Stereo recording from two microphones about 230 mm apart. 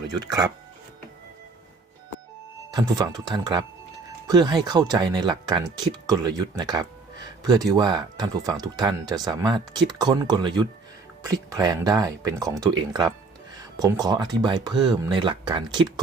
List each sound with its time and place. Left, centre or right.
0.2 s speech: centre
2.7 s speech: centre